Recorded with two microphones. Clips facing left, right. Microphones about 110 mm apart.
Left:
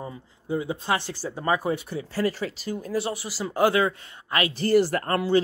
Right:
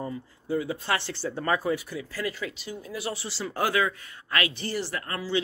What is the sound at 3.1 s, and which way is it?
Speech, 15° left (ahead or behind).